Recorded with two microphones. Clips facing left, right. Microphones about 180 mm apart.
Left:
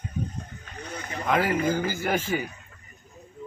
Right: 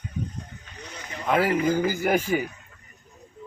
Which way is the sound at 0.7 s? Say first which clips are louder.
Left 4 dB; 55° left (ahead or behind).